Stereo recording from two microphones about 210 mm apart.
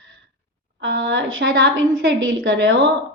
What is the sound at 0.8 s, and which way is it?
Speech, 60° right (ahead or behind).